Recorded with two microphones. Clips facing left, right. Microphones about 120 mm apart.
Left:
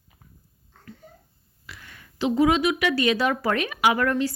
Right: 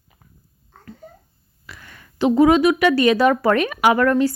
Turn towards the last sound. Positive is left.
turn(degrees=-50)  # may be behind; listen again after turning